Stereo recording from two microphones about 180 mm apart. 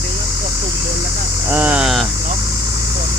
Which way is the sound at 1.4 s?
10° right (ahead or behind).